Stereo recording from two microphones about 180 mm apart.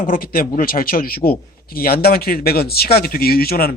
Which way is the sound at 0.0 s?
50° left (ahead or behind).